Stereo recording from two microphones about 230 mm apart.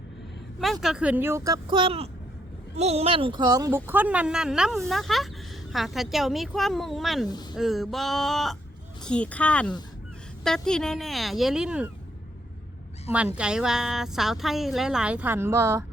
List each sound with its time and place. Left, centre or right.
0.6 s a woman's voice: centre
13.1 s a woman's voice: centre